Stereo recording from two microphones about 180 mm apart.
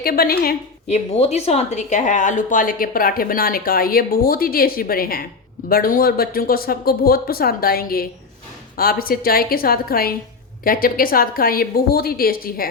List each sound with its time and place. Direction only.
0.0 s speech: 55° left (ahead or behind)
0.9 s a woman's voice: 40° left (ahead or behind); by 12.6 s 55° left (ahead or behind)